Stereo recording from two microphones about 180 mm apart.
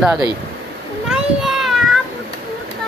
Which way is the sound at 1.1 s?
Centre (ahead or behind).